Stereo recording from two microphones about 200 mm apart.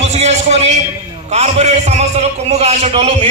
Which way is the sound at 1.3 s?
35° right (ahead or behind).